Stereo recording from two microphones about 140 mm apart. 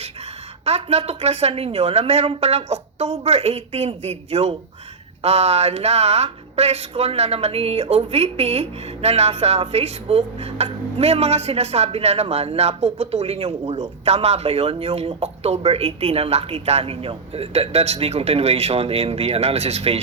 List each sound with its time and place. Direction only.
0.6 s speech: 50° right (ahead or behind)